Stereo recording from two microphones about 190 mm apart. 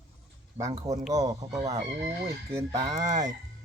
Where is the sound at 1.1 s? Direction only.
20° right (ahead or behind).